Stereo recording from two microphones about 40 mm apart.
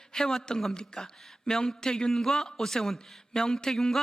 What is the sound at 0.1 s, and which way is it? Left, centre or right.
Speech, centre.